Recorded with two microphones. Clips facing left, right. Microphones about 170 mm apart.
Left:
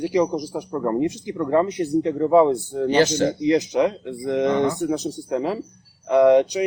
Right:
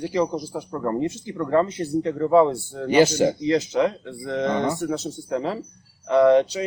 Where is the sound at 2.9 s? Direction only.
10° right (ahead or behind).